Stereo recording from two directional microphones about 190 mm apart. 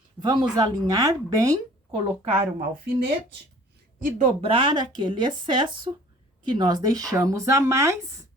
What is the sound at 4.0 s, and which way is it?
Speech, 40° right (ahead or behind).